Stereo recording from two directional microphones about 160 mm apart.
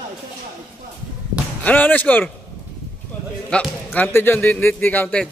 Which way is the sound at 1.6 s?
10° left (ahead or behind).